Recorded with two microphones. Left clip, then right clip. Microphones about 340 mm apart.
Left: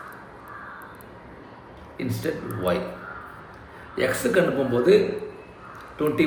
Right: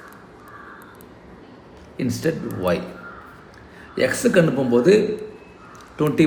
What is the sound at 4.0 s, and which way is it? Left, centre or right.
A man's voice, right.